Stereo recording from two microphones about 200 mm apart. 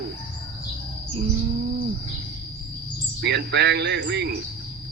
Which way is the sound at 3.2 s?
55° right (ahead or behind).